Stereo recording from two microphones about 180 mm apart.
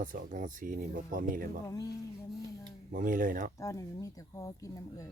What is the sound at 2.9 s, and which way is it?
Speech, 50° right (ahead or behind).